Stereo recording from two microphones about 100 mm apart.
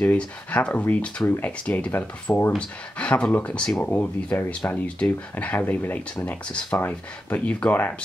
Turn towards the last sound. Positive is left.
turn(degrees=15)  # may be behind; listen again after turning